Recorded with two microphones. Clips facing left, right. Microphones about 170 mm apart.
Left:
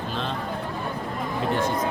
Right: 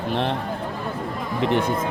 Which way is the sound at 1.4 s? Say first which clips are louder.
Right 4 dB; 65° right (ahead or behind).